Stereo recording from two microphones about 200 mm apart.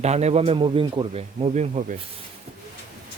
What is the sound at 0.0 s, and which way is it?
A man's voice, 35° right (ahead or behind).